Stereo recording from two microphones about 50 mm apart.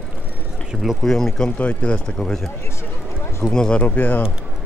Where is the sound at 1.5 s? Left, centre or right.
Left.